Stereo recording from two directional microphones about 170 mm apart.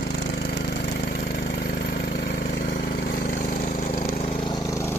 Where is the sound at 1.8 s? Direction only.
75° left (ahead or behind).